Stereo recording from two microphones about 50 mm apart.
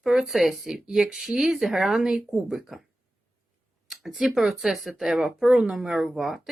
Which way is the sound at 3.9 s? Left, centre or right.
Centre.